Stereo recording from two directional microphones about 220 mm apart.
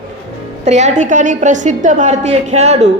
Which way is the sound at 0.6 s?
30° right (ahead or behind).